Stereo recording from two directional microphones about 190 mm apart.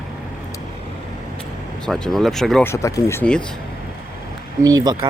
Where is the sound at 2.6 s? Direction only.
15° left (ahead or behind).